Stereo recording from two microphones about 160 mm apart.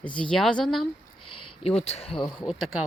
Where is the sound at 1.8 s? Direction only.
40° left (ahead or behind).